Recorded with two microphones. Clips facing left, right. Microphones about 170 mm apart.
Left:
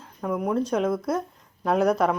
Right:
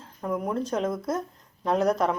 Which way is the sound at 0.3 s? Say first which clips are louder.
Left 3 dB; centre (ahead or behind).